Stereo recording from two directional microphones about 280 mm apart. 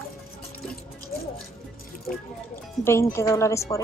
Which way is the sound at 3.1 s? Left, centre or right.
Centre.